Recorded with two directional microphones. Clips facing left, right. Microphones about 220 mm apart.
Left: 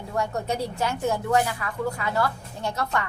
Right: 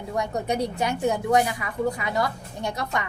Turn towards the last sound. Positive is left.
turn(degrees=-15)  # may be behind; listen again after turning